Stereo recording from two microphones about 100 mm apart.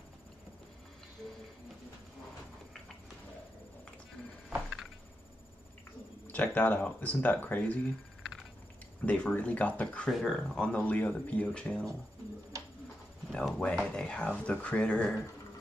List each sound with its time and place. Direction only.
6.3 s speech: 15° left (ahead or behind)
9.0 s speech: 10° left (ahead or behind)
10.6 s speech: 15° left (ahead or behind)
13.3 s speech: 10° left (ahead or behind)